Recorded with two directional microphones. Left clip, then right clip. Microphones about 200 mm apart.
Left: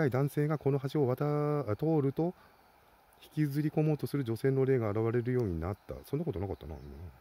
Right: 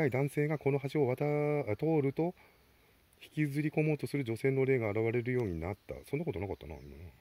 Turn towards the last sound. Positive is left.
turn(degrees=25)  # may be behind; listen again after turning